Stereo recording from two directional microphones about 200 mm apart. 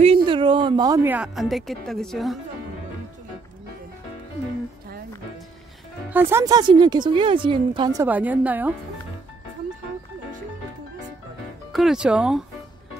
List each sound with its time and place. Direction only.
0.0 s speech: 25° right (ahead or behind); by 2.3 s centre (ahead or behind)
6.0 s speech: 10° right (ahead or behind)
6.7 s a woman's voice: 25° right (ahead or behind)
11.7 s speech: centre (ahead or behind)